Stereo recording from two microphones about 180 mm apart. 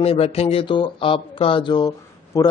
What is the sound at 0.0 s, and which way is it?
Speech, 35° left (ahead or behind).